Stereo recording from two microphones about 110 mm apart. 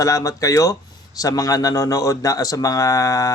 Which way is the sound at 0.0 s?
30° left (ahead or behind).